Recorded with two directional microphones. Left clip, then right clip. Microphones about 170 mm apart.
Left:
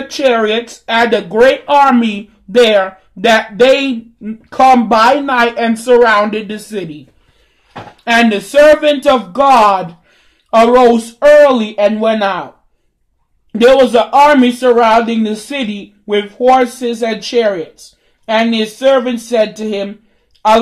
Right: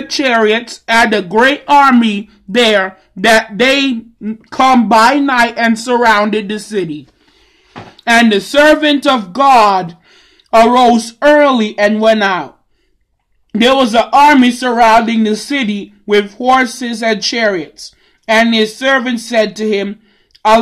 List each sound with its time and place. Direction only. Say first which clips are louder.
0.1 s speech: right 1 dB; 15° right (ahead or behind)
8.0 s speech: right 2 dB; 20° right (ahead or behind)
13.5 s a man's voice: left 3 dB; 20° right (ahead or behind)